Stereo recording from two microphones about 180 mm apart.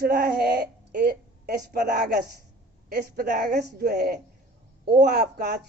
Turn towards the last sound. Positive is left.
turn(degrees=-60)  # may be behind; listen again after turning